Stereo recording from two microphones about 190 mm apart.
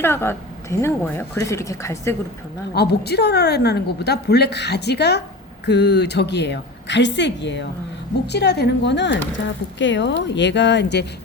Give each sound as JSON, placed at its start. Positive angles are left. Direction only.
{"t": 0.0, "sound": "a woman's voice", "side_deg": 15}
{"t": 2.7, "sound": "a woman's voice", "side_deg": 60}